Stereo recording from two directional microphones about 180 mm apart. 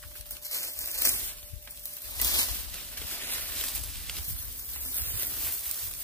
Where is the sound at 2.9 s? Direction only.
10° left (ahead or behind).